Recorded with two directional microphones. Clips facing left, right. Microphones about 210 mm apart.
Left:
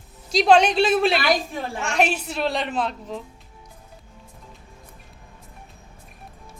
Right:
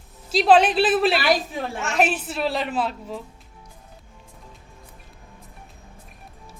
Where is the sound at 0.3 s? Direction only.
5° right (ahead or behind).